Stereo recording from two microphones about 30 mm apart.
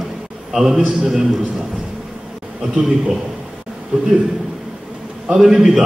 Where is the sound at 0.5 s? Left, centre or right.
Centre.